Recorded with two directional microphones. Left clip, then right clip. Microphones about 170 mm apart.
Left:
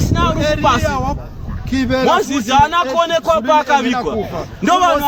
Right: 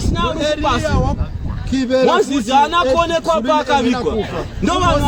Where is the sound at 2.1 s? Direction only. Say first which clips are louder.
Even; 15° right (ahead or behind).